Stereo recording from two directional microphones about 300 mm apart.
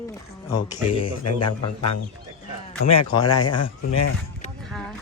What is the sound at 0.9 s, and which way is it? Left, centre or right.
Speech, left.